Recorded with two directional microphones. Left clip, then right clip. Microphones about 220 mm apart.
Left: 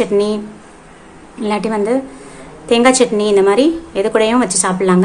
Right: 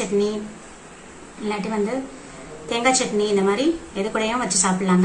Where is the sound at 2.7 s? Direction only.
50° left (ahead or behind).